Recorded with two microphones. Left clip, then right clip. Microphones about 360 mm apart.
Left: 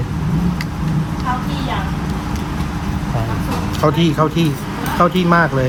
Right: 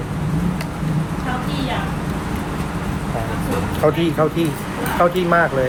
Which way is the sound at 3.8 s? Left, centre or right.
Left.